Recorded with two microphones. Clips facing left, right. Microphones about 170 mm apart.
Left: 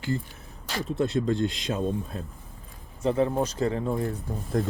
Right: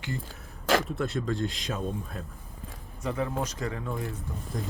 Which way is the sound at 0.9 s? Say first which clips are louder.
Left 5 dB; 25° left (ahead or behind).